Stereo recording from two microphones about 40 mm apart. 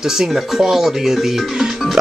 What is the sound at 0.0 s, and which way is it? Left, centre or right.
Speech, centre.